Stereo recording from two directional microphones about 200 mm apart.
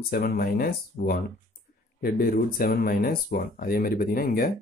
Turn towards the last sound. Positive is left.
turn(degrees=45)  # may be behind; listen again after turning